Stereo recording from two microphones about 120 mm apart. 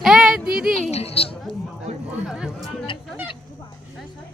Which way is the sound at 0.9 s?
55° left (ahead or behind).